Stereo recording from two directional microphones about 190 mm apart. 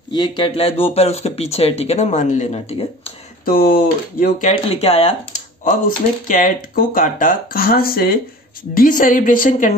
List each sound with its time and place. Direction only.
0.1 s speech: 25° left (ahead or behind)
3.4 s speech: 50° left (ahead or behind)
4.5 s speech: 30° left (ahead or behind)